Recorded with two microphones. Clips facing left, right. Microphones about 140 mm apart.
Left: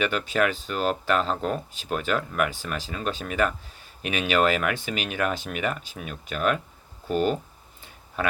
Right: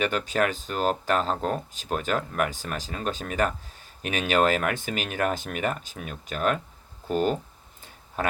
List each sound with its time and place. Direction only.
0.0 s speech: 45° right (ahead or behind)
7.9 s tick-tock: 45° right (ahead or behind)